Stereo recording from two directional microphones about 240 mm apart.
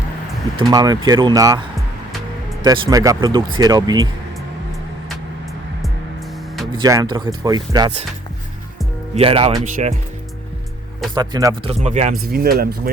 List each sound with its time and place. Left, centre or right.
0.6 s speech: centre
2.6 s speech: centre
6.7 s speech: centre
9.1 s speech: right
11.1 s speech: centre
11.7 s speech: right
12.3 s speech: right